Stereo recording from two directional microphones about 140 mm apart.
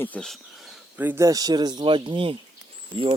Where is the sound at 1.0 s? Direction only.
20° right (ahead or behind).